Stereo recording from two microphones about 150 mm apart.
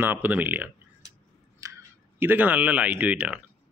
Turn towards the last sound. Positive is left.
turn(degrees=-10)  # may be behind; listen again after turning